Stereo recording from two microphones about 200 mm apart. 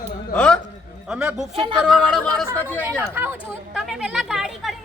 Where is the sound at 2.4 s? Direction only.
15° right (ahead or behind).